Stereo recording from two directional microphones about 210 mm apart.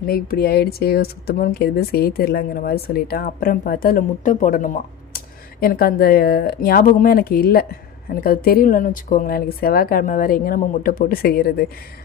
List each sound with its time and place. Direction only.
0.0 s speech: 45° left (ahead or behind)